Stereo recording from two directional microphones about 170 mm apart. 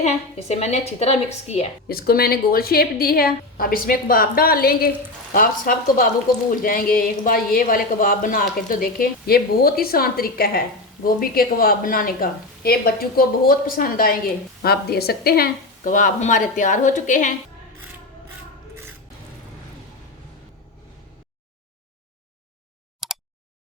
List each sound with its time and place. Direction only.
0.0 s a woman's voice: 40° left (ahead or behind)
1.9 s a woman's voice: 60° left (ahead or behind)
23.0 s a sound: centre (ahead or behind)